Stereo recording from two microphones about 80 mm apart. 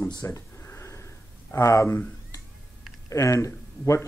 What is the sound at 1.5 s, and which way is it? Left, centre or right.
Speech, left.